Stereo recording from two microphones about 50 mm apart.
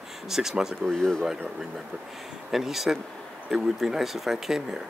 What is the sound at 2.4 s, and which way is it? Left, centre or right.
Speech, centre.